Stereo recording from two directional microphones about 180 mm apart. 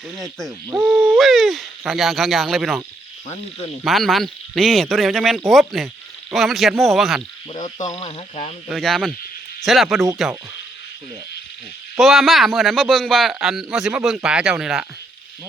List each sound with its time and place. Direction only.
0.2 s speech: centre (ahead or behind)
0.7 s speech: 10° right (ahead or behind)
1.2 s speech: centre (ahead or behind)
3.8 s speech: centre (ahead or behind)
7.5 s speech: 40° left (ahead or behind)
8.7 s speech: centre (ahead or behind)
11.9 s speech: centre (ahead or behind)